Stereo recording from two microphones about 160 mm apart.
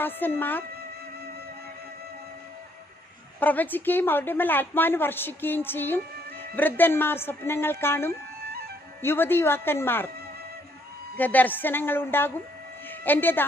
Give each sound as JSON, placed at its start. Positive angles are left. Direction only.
{"t": 0.0, "sound": "a woman's voice", "side_deg": 10}
{"t": 3.4, "sound": "a woman's voice", "side_deg": 10}
{"t": 11.2, "sound": "a woman's voice", "side_deg": 10}